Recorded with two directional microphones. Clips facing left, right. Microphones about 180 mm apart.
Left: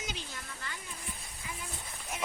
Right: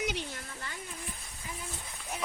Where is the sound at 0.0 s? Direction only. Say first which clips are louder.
Right 7 dB; 65° right (ahead or behind).